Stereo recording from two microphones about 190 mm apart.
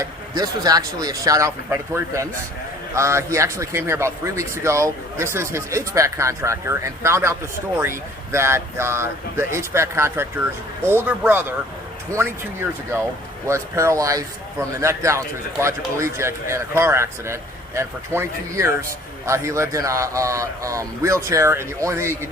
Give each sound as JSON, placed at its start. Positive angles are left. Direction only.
{"t": 0.0, "sound": "speech", "side_deg": -20}